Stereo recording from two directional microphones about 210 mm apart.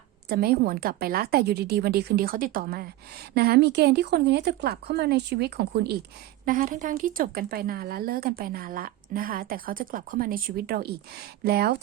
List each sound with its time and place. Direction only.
0.3 s a woman's voice: 50° right (ahead or behind)